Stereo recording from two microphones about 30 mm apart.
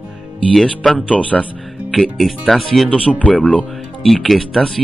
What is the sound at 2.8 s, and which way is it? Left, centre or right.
Speech, left.